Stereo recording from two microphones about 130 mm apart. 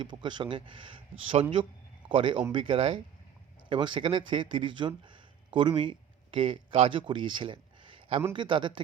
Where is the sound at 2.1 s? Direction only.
40° right (ahead or behind).